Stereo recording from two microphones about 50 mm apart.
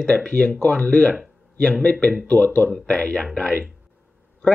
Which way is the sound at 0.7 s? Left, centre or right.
Left.